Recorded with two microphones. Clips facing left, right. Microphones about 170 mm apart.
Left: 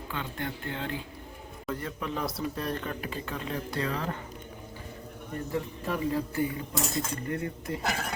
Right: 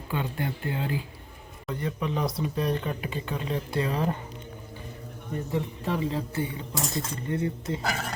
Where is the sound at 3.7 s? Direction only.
25° right (ahead or behind).